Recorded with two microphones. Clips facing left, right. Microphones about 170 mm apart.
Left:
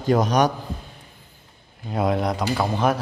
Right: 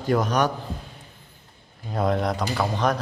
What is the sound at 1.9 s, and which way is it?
A man's voice, 5° left (ahead or behind).